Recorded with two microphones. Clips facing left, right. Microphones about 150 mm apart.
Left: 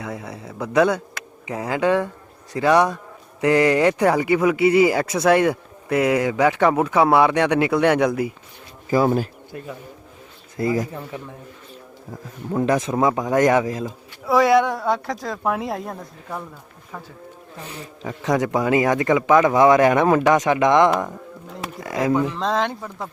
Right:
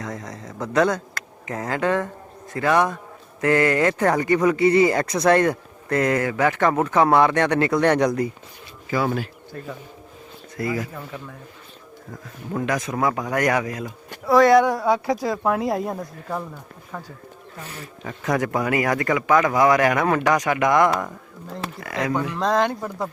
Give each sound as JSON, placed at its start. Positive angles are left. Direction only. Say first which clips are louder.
{"t": 0.0, "sound": "speech", "louder": "left 1 dB", "side_deg": 10}
{"t": 8.9, "sound": "speech", "louder": "left 5 dB", "side_deg": 40}
{"t": 10.6, "sound": "speech", "louder": "left 4 dB", "side_deg": 25}
{"t": 12.5, "sound": "speech", "louder": "left 4 dB", "side_deg": 25}
{"t": 14.3, "sound": "speech", "louder": "right 2 dB", "side_deg": 5}
{"t": 18.0, "sound": "speech", "louder": "left 2 dB", "side_deg": 20}
{"t": 22.4, "sound": "speech", "louder": "right 2 dB", "side_deg": 0}